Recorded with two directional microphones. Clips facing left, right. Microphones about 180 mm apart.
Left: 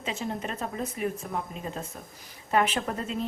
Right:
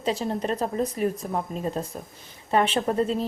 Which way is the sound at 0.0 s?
35° right (ahead or behind).